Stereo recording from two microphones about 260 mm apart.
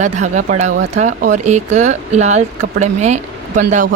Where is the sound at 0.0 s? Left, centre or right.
Right.